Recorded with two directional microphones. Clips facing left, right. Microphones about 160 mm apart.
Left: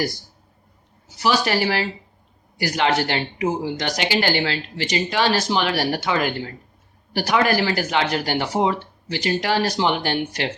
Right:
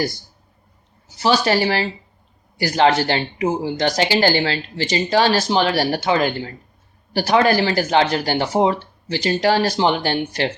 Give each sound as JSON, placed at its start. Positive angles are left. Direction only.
{"t": 1.5, "sound": "speech", "side_deg": -30}